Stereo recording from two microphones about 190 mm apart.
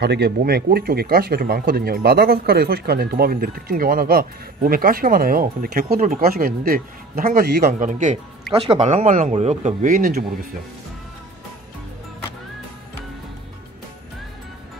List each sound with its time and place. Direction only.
0.0 s speech: 60° right (ahead or behind)
7.8 s speech: 40° right (ahead or behind)